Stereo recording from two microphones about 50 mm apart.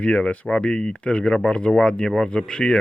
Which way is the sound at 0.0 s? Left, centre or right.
Left.